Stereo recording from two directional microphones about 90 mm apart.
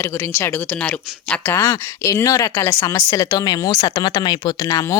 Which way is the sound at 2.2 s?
40° left (ahead or behind).